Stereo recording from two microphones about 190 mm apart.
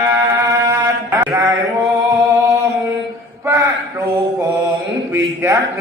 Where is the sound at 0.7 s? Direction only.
15° right (ahead or behind).